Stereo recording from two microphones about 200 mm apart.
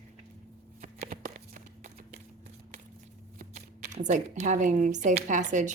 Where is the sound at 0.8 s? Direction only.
45° right (ahead or behind).